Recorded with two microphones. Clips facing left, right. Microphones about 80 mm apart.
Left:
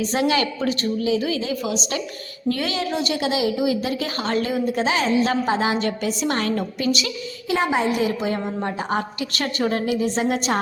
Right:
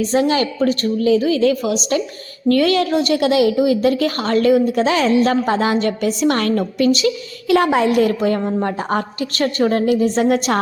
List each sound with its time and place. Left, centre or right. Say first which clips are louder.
0.1 s a woman's voice: right 4 dB; right
7.4 s a woman's voice: right 6 dB; right